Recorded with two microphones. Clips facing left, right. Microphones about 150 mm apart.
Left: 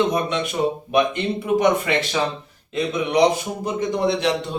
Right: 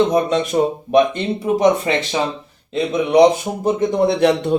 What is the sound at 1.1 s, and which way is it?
Speech, 30° right (ahead or behind).